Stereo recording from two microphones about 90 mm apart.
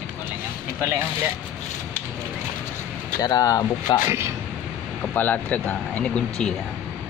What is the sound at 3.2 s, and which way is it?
Speech, 45° left (ahead or behind).